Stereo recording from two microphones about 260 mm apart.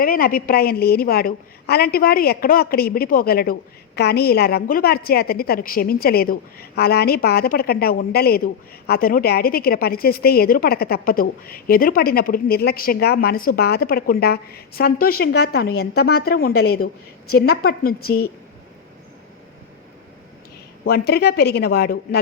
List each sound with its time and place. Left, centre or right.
0.0 s a woman's voice: left
20.8 s a woman's voice: left